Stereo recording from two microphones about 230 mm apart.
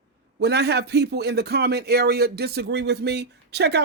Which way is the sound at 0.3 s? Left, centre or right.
Right.